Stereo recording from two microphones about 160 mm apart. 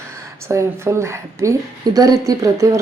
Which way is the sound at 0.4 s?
15° right (ahead or behind).